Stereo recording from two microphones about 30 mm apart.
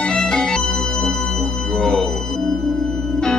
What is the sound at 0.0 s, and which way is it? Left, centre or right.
Music, left.